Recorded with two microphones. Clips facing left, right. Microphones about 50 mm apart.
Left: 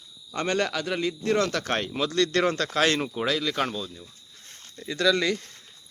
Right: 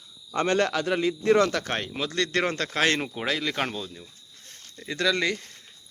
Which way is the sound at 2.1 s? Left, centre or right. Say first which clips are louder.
Left 2 dB; right.